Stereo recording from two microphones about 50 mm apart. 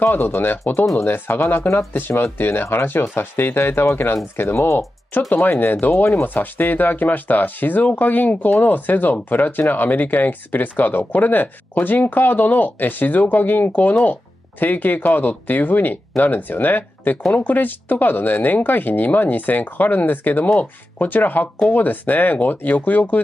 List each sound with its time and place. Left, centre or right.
0.2 s speech: left